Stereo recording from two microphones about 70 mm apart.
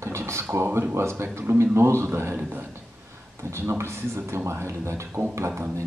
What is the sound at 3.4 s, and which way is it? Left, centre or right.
A man's voice, right.